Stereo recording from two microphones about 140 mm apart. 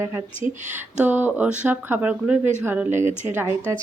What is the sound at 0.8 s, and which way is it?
A woman's voice, 15° right (ahead or behind).